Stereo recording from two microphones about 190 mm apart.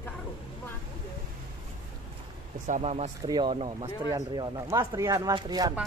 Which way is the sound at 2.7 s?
35° right (ahead or behind).